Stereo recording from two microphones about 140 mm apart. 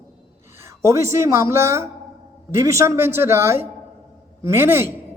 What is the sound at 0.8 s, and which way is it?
A man's voice, 20° right (ahead or behind).